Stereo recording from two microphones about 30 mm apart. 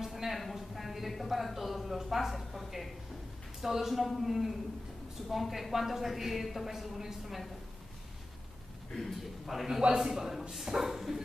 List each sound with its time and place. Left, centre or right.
0.0 s a sound: centre
0.6 s a woman's voice: centre
8.9 s a woman's voice: centre
9.7 s a man's voice: centre
9.9 s a man's voice: centre